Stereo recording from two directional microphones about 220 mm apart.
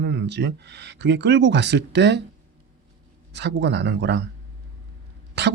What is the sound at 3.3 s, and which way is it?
Speech, 50° right (ahead or behind).